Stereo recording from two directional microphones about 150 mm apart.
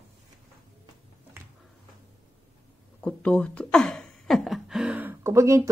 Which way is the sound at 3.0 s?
5° left (ahead or behind).